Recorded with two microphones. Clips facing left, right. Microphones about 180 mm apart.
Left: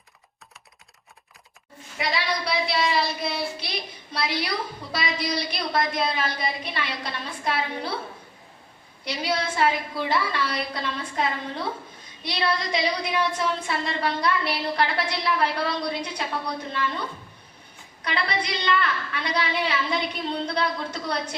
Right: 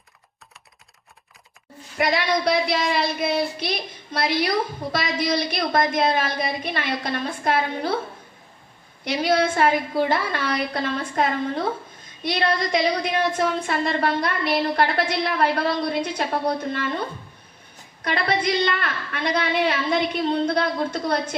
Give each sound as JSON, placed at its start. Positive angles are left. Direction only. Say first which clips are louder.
{"t": 2.0, "sound": "child singing", "louder": "right 6 dB", "side_deg": -50}
{"t": 4.1, "sound": "a woman's voice", "louder": "right 6 dB", "side_deg": -50}
{"t": 9.0, "sound": "a woman's voice", "louder": "right 7 dB", "side_deg": -50}
{"t": 18.0, "sound": "a woman's voice", "louder": "right 5 dB", "side_deg": -50}